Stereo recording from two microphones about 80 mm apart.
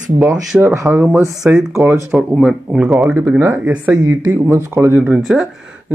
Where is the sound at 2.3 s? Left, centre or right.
Centre.